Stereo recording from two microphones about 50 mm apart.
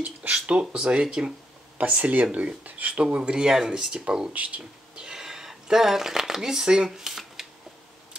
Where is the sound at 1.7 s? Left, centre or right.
Right.